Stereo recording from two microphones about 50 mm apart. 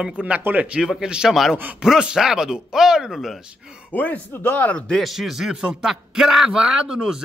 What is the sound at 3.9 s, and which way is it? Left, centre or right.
Speech, left.